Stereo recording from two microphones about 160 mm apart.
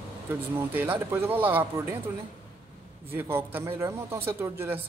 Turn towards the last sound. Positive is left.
turn(degrees=-15)  # may be behind; listen again after turning